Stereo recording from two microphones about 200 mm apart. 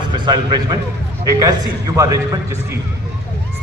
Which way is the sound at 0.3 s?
20° right (ahead or behind).